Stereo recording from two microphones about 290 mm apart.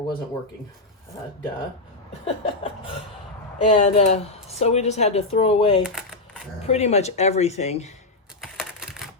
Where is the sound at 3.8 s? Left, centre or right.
Left.